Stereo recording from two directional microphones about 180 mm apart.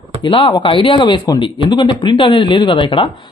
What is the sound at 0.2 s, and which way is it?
Speech, 30° left (ahead or behind).